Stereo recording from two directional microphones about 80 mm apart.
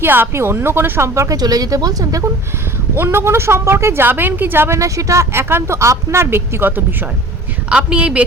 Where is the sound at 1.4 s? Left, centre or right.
Right.